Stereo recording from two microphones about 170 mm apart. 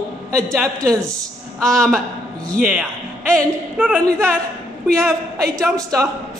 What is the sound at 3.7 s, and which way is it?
Speech, 5° right (ahead or behind).